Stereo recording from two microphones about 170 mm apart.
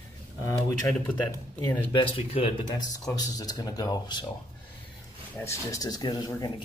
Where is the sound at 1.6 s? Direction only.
20° left (ahead or behind).